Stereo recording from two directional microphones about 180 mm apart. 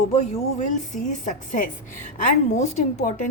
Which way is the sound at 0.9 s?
45° left (ahead or behind).